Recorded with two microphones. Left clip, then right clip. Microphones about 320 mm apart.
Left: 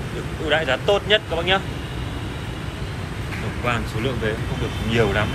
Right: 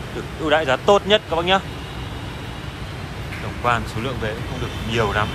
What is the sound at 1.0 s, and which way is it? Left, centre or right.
Speech, right.